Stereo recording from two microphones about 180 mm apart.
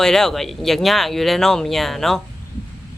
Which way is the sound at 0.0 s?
5° left (ahead or behind).